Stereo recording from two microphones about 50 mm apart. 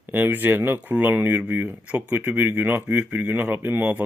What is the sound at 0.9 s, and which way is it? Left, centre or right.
Speech, right.